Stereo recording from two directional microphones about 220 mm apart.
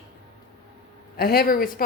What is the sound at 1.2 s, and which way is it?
Speech, 45° left (ahead or behind).